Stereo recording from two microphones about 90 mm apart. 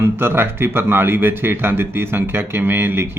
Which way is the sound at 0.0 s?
25° right (ahead or behind).